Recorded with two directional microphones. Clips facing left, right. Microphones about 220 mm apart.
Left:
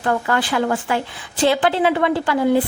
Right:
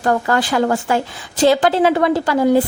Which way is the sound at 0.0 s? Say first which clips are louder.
Right 3 dB; 40° right (ahead or behind).